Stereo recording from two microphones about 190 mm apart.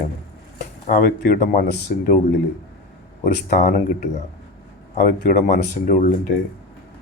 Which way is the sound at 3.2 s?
45° left (ahead or behind).